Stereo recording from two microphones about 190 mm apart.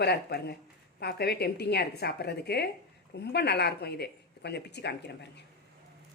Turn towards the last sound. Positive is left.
turn(degrees=60)  # may be behind; listen again after turning